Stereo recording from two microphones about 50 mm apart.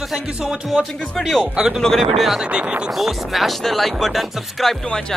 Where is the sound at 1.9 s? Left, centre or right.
Centre.